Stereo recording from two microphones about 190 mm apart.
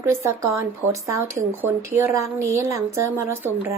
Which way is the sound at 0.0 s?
15° right (ahead or behind).